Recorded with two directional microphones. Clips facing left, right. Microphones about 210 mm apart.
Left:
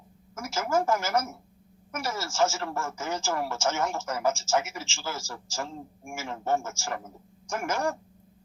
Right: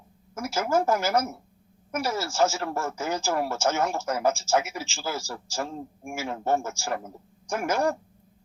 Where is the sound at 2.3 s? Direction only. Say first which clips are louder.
Right 1 dB; 35° right (ahead or behind).